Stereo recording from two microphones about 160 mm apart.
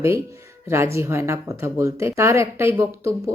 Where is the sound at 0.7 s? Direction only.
15° right (ahead or behind).